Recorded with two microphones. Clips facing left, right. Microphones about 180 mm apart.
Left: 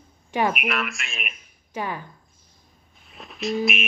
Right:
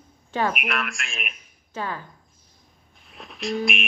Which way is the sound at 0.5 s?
Centre (ahead or behind).